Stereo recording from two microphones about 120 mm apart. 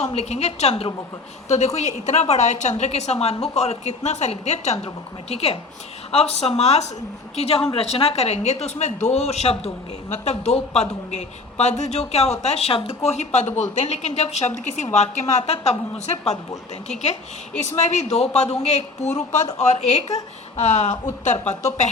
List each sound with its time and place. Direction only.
0.0 s speech: 65° left (ahead or behind)
1.5 s a woman's voice: 70° left (ahead or behind)